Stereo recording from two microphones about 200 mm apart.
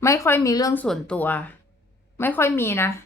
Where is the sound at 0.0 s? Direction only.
15° left (ahead or behind).